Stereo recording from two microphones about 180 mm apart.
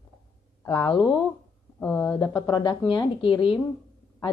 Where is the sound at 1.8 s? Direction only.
15° left (ahead or behind); by 3.6 s 30° left (ahead or behind).